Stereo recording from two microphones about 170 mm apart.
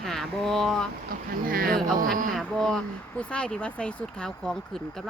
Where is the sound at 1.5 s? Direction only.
55° right (ahead or behind).